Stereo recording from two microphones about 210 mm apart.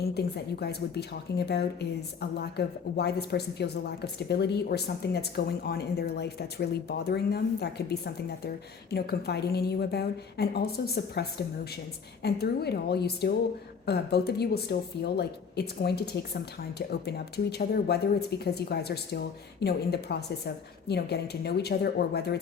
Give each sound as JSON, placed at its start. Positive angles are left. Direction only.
{"t": 0.0, "sound": "a woman's voice", "side_deg": 50}